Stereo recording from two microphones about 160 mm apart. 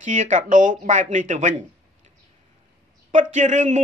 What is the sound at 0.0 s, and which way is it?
Speech, 50° right (ahead or behind).